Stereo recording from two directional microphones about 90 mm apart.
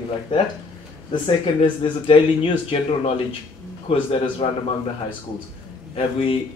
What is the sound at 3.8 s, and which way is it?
Speech, 90° left.